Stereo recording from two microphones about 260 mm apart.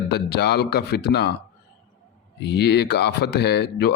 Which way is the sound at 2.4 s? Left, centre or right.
Left.